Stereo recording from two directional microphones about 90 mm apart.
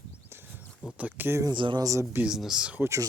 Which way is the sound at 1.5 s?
65° right (ahead or behind).